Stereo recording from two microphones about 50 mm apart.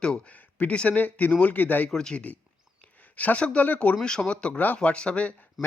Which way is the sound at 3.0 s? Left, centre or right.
Left.